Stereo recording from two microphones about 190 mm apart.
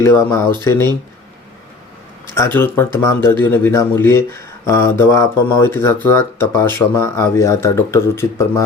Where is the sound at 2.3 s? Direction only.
10° left (ahead or behind).